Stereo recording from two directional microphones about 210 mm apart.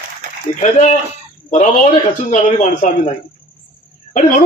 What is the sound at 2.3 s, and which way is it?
Speech, 35° left (ahead or behind).